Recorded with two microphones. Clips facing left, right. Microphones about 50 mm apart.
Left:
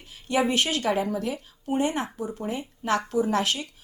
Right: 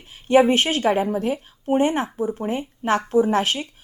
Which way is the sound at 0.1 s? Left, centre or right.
Right.